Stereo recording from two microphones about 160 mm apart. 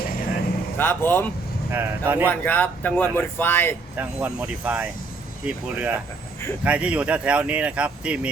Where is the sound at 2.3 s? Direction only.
10° left (ahead or behind).